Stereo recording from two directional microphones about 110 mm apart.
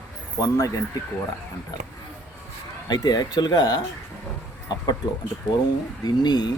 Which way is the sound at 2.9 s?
35° left (ahead or behind).